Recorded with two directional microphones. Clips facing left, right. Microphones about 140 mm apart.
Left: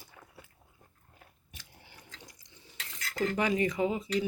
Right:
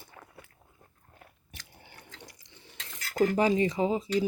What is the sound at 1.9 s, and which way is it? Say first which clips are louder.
Water: right 4 dB; 65° right (ahead or behind).